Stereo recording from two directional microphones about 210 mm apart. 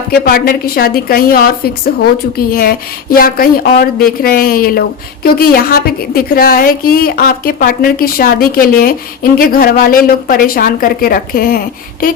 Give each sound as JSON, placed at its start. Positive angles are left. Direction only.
{"t": 0.1, "sound": "speech", "side_deg": 45}